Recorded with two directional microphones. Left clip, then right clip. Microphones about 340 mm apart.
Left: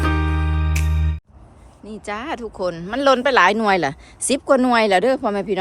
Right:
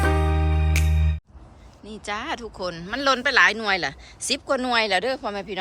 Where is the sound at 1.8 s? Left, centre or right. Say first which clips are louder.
Left 2 dB; centre.